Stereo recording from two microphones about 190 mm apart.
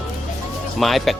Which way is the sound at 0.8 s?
Centre (ahead or behind).